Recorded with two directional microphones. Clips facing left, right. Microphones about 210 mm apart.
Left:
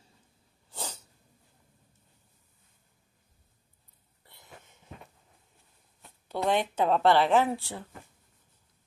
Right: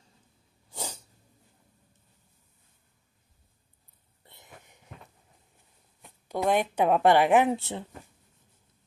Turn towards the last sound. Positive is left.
turn(degrees=-20)  # may be behind; listen again after turning